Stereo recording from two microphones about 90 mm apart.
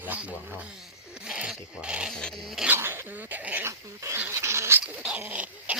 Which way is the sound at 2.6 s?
25° right (ahead or behind).